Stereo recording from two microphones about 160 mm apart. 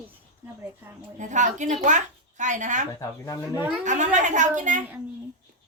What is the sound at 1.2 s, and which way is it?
A woman's voice, 50° right (ahead or behind).